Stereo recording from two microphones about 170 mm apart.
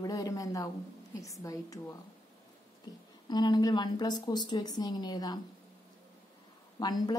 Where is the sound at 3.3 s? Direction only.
25° left (ahead or behind).